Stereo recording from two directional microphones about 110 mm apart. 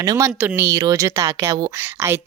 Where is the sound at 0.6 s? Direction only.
30° right (ahead or behind).